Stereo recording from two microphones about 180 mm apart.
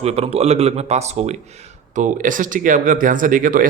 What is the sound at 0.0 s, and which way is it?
Speech, 35° right (ahead or behind).